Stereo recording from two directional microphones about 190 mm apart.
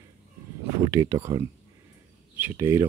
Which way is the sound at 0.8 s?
15° right (ahead or behind).